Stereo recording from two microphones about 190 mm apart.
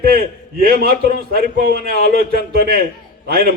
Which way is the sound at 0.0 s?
50° right (ahead or behind).